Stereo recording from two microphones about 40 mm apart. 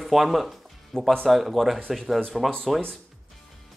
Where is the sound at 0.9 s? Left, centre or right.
Centre.